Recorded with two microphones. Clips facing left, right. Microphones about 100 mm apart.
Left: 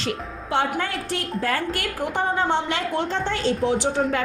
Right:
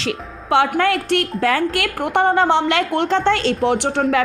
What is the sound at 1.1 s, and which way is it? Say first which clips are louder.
Speech: right 7 dB; 75° right (ahead or behind).